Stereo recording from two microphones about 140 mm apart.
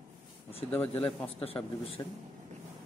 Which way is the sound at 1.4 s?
40° left (ahead or behind).